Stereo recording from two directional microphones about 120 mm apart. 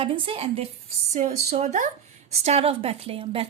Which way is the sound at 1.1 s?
70° right (ahead or behind).